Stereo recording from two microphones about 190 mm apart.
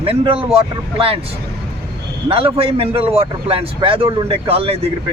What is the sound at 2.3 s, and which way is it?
Speech, 30° right (ahead or behind).